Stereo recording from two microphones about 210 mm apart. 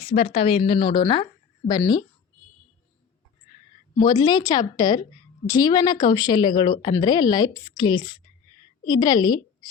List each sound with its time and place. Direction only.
0.0 s speech: 25° left (ahead or behind)
3.9 s a woman's voice: 20° left (ahead or behind)